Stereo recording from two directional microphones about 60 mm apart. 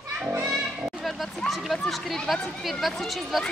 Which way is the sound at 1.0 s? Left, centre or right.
Centre.